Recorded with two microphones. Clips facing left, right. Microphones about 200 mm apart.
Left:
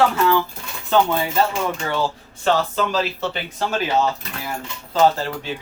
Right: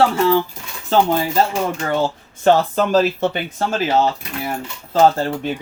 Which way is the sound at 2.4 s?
50° right (ahead or behind).